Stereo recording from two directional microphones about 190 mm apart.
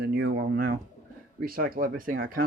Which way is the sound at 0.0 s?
65° right (ahead or behind).